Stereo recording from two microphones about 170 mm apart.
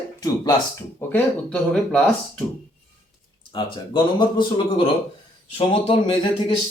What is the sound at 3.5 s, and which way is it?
A man's voice, 30° left (ahead or behind).